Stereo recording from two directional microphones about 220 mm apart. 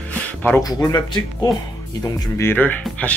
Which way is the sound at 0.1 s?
5° left (ahead or behind).